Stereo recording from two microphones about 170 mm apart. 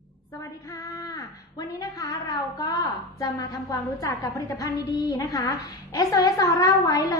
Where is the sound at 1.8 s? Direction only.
20° left (ahead or behind).